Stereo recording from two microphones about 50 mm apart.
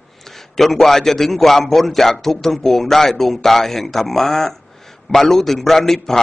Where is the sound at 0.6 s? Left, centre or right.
Centre.